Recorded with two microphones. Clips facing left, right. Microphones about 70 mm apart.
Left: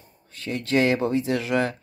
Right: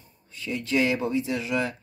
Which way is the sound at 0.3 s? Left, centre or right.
Left.